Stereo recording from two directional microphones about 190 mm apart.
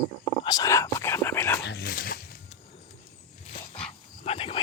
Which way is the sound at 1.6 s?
55° left (ahead or behind).